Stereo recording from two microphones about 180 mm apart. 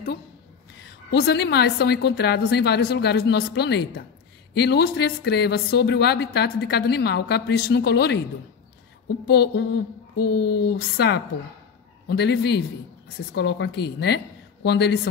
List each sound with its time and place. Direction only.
1.1 s a woman's voice: 70° left (ahead or behind)
9.3 s a woman's voice: 70° left (ahead or behind)